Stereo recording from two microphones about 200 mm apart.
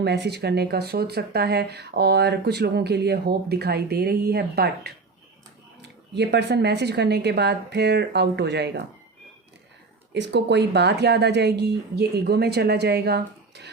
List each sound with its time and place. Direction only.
0.0 s speech: 55° right (ahead or behind)
6.1 s speech: 55° right (ahead or behind)
10.2 s speech: 60° right (ahead or behind)